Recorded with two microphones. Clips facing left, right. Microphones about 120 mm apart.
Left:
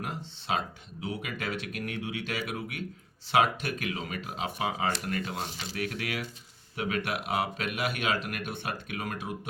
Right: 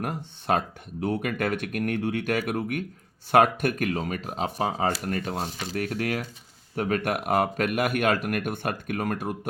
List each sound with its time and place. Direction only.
0.0 s speech: 55° right (ahead or behind)